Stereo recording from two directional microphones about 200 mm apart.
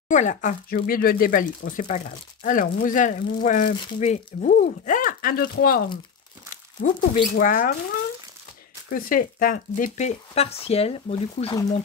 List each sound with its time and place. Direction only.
0.1 s speech: 40° left (ahead or behind)
8.8 s speech: 45° left (ahead or behind); by 11.5 s 30° left (ahead or behind)